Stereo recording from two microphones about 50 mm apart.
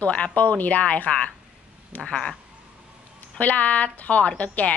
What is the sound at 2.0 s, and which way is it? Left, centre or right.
Speech, centre.